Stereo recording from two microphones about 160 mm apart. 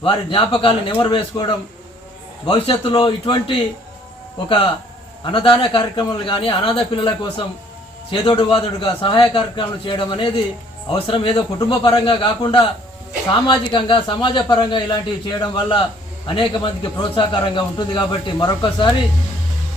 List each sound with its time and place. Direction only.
0.0 s a man's voice: 35° left (ahead or behind)
13.7 s a man's voice: 30° left (ahead or behind)